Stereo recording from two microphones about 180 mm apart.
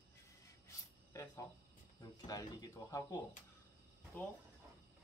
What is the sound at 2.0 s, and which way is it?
Speech, 20° left (ahead or behind).